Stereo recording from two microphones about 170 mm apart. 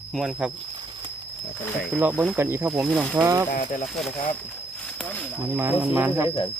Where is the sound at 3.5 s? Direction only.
50° left (ahead or behind).